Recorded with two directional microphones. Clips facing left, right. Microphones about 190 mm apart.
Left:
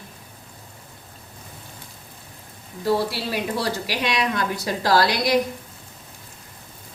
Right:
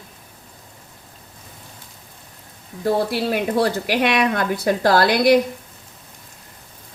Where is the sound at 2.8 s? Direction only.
55° right (ahead or behind).